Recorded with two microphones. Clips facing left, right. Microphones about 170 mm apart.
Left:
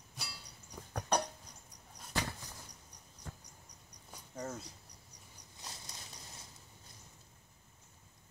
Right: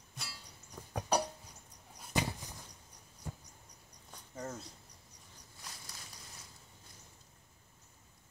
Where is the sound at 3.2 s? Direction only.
10° right (ahead or behind).